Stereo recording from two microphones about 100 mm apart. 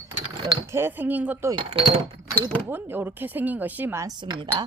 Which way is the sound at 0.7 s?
20° right (ahead or behind).